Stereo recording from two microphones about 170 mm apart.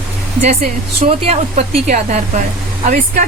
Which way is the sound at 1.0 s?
35° right (ahead or behind).